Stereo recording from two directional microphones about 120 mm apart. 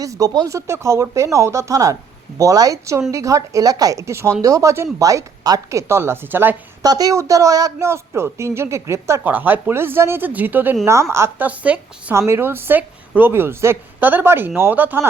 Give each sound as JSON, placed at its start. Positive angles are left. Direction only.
{"t": 0.0, "sound": "speech", "side_deg": -30}
{"t": 6.8, "sound": "a woman's voice", "side_deg": -30}
{"t": 12.1, "sound": "speech", "side_deg": -20}